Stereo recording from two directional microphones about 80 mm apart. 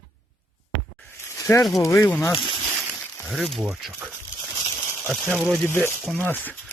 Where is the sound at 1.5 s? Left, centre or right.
Left.